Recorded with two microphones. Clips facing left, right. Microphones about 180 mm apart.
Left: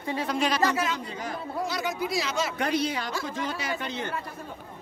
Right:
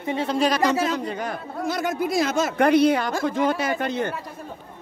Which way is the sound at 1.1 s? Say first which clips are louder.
Right 4 dB; 60° right (ahead or behind).